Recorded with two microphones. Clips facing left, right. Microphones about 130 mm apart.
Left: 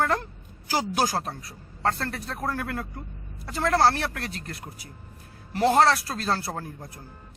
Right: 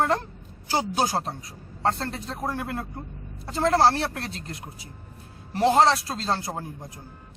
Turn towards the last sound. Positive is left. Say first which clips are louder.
# right 1 dB
turn(degrees=-20)  # may be behind; listen again after turning